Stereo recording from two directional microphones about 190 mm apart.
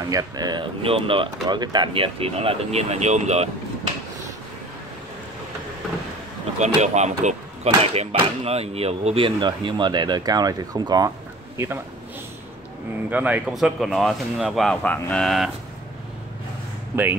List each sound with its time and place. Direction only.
0.0 s speech: 20° right (ahead or behind); by 3.4 s 35° right (ahead or behind)
6.6 s a man's voice: 35° right (ahead or behind); by 11.8 s 15° right (ahead or behind)
13.1 s speech: 5° right (ahead or behind)
16.9 s speech: 10° right (ahead or behind)